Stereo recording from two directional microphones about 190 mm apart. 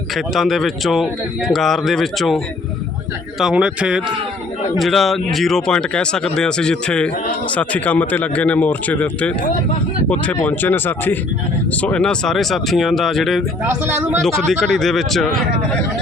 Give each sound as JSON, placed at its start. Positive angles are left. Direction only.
{"t": 0.3, "sound": "speech", "side_deg": 0}
{"t": 10.3, "sound": "speech", "side_deg": 10}
{"t": 13.7, "sound": "speech", "side_deg": -10}
{"t": 14.2, "sound": "speech", "side_deg": 5}